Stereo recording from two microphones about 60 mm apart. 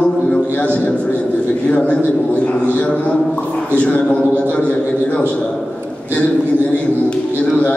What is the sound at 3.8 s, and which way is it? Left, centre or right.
A man's voice, left.